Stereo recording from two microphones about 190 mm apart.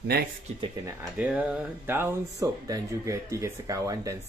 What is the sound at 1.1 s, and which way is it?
Speech, 5° right (ahead or behind).